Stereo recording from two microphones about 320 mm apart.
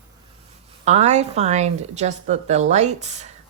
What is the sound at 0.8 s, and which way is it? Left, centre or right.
A woman's voice, right.